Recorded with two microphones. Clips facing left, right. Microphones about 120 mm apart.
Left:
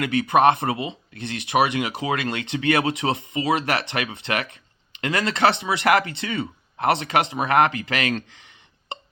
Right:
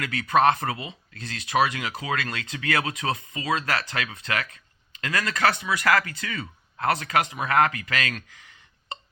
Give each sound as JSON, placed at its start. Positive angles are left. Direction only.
{"t": 0.0, "sound": "speech", "side_deg": 25}